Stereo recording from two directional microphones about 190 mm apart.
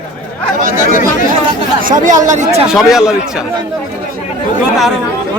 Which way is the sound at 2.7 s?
Centre (ahead or behind).